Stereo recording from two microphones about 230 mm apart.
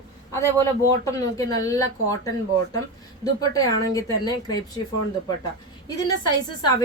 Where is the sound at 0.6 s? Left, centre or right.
Centre.